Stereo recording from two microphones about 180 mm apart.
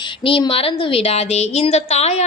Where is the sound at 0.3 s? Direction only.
30° left (ahead or behind).